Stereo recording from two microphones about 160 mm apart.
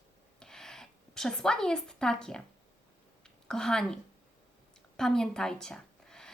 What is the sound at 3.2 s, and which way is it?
Speech, 5° left (ahead or behind).